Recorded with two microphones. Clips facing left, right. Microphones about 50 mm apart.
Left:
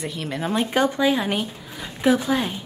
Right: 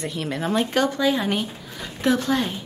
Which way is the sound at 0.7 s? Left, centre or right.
Centre.